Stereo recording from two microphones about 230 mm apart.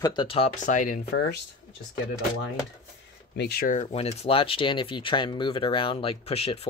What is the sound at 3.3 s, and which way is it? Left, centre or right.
Speech, left.